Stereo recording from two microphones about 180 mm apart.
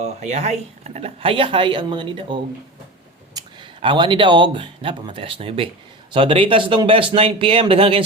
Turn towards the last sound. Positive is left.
turn(degrees=-30)  # may be behind; listen again after turning